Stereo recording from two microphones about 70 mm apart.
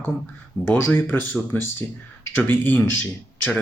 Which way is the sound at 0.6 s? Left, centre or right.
Left.